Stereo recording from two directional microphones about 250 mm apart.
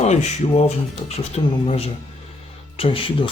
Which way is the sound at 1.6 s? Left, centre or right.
Left.